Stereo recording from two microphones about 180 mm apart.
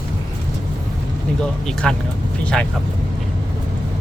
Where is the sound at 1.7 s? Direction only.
5° left (ahead or behind).